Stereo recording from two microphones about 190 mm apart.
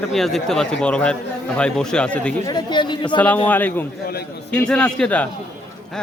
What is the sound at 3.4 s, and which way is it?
A man's voice, 10° left (ahead or behind).